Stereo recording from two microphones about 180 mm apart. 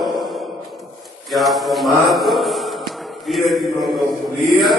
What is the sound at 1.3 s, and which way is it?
A man's voice, centre (ahead or behind).